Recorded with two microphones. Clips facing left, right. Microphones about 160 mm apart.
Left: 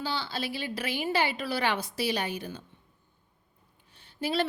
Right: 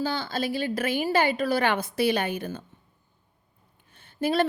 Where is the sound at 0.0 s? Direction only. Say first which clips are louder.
Right 5 dB; 45° right (ahead or behind).